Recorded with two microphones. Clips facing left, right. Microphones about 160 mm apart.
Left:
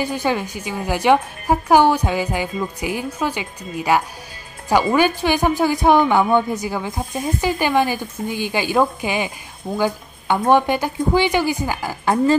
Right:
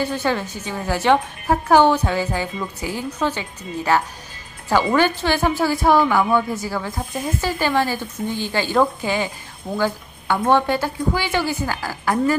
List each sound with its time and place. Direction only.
0.0 s a woman's voice: 15° left (ahead or behind)